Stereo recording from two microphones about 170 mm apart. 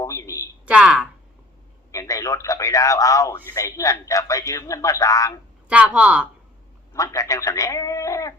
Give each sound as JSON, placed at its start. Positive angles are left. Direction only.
{"t": 0.0, "sound": "a sound", "side_deg": 20}
{"t": 0.6, "sound": "a woman's voice", "side_deg": -5}
{"t": 1.9, "sound": "a man's voice", "side_deg": 20}
{"t": 5.6, "sound": "speech", "side_deg": -5}
{"t": 6.9, "sound": "speech", "side_deg": 20}